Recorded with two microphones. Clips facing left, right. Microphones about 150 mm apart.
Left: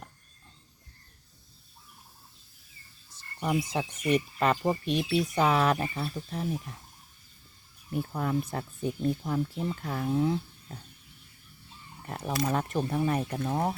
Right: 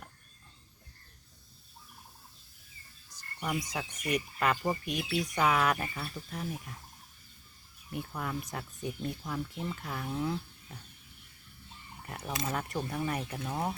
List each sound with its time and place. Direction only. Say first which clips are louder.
3.2 s speech: left 6 dB; 25° left (ahead or behind)
7.9 s speech: left 7 dB; 30° left (ahead or behind)
10.1 s speech: left 7 dB; 25° left (ahead or behind)
12.0 s speech: left 6 dB; 30° left (ahead or behind)